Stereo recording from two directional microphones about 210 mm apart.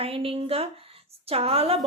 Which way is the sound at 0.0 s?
25° right (ahead or behind).